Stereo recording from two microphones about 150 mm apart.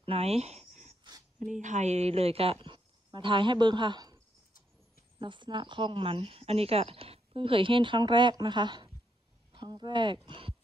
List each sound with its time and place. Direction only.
0.0 s a sound: 40° right (ahead or behind)
1.5 s speech: 55° right (ahead or behind); by 4.2 s 30° right (ahead or behind)
5.2 s speech: 30° right (ahead or behind)